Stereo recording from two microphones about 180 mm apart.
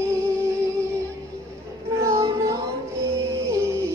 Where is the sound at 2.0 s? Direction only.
15° right (ahead or behind).